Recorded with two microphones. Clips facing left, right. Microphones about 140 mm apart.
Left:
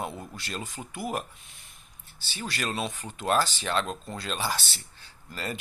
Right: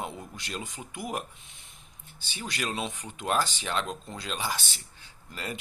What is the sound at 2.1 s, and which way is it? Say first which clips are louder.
Speech: left 1 dB; 20° right (ahead or behind).